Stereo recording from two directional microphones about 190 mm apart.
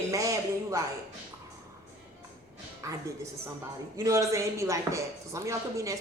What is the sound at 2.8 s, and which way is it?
Speech, 15° right (ahead or behind).